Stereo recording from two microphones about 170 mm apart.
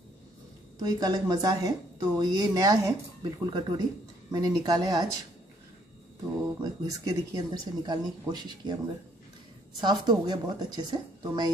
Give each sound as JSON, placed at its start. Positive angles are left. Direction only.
{"t": 0.7, "sound": "a woman's voice", "side_deg": -20}
{"t": 6.6, "sound": "a woman's voice", "side_deg": -25}
{"t": 9.8, "sound": "a woman's voice", "side_deg": -25}